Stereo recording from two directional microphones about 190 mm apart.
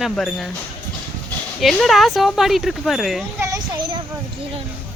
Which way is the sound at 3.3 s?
15° right (ahead or behind).